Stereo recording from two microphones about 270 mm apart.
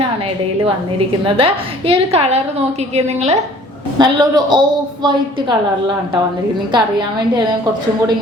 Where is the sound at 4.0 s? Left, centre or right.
Centre.